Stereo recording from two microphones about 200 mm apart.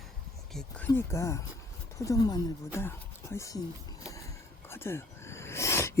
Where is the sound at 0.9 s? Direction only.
15° left (ahead or behind).